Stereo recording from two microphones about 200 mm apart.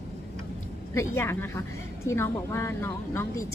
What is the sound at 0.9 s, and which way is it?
Speech, 15° left (ahead or behind).